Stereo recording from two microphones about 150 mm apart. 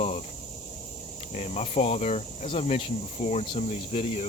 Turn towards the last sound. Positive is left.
turn(degrees=40)  # may be behind; listen again after turning